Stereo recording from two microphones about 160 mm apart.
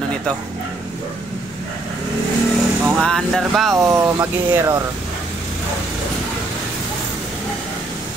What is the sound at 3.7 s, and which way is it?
Speech, 20° right (ahead or behind).